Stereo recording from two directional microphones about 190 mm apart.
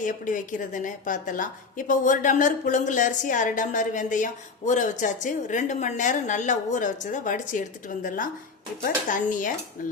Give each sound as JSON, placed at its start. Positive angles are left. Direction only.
{"t": 0.0, "sound": "a woman's voice", "side_deg": 45}
{"t": 9.8, "sound": "dishes", "side_deg": 45}